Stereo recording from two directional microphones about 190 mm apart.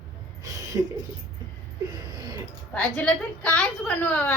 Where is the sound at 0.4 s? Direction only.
20° right (ahead or behind).